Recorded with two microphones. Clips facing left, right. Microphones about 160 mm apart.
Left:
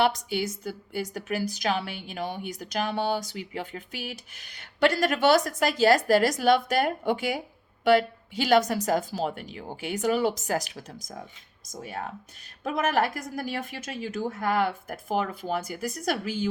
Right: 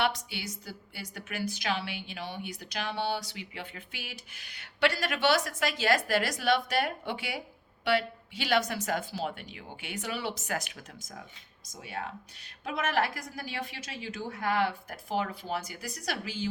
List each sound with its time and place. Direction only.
0.0 s a woman's voice: 45° left (ahead or behind)